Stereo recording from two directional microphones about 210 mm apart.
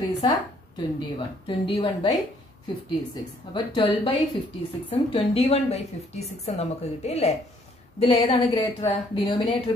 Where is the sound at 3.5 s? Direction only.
20° left (ahead or behind).